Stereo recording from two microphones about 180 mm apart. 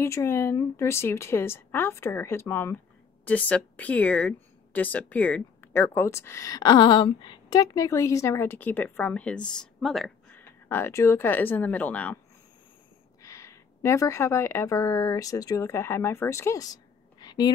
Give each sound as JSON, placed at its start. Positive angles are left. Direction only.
{"t": 0.0, "sound": "speech", "side_deg": 15}
{"t": 10.7, "sound": "speech", "side_deg": 15}
{"t": 13.2, "sound": "a woman's voice", "side_deg": 15}